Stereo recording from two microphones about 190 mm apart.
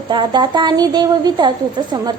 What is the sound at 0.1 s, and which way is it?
A woman's voice, 25° right (ahead or behind).